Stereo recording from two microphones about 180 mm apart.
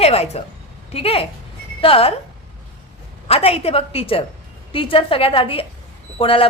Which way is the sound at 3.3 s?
35° left (ahead or behind).